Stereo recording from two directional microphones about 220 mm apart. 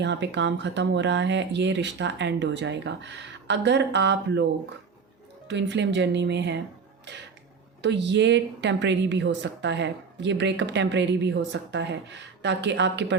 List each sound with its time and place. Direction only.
0.0 s a woman's voice: 50° right (ahead or behind)
5.5 s a woman's voice: 55° right (ahead or behind)
7.8 s a woman's voice: 55° right (ahead or behind)